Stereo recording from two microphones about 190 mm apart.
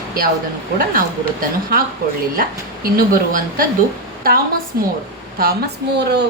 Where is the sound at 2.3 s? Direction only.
50° right (ahead or behind).